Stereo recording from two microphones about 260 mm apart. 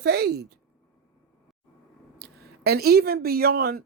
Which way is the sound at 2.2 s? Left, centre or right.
Right.